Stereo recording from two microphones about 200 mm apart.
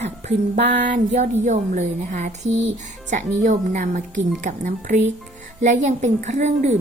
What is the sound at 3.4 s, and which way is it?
A woman's voice, 35° right (ahead or behind).